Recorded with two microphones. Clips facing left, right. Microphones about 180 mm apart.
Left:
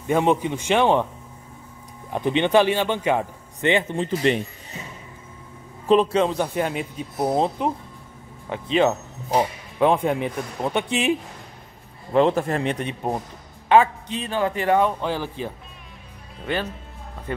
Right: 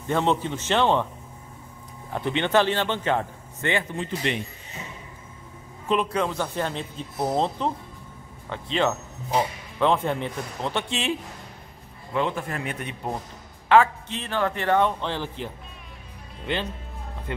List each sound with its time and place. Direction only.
0.0 s speech: 15° left (ahead or behind)
2.1 s speech: 15° left (ahead or behind)
3.9 s speech: 35° left (ahead or behind)
5.9 s speech: 35° left (ahead or behind)
6.2 s speech: 20° left (ahead or behind)
12.1 s speech: 35° left (ahead or behind)
13.7 s speech: 15° left (ahead or behind)